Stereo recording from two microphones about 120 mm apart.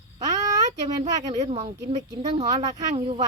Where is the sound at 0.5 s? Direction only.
35° right (ahead or behind).